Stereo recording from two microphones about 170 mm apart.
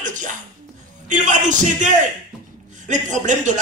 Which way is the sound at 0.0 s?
50° right (ahead or behind).